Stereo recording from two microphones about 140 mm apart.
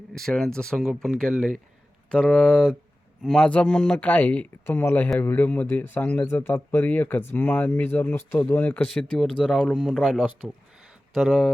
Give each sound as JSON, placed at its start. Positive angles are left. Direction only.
{"t": 0.1, "sound": "speech", "side_deg": 5}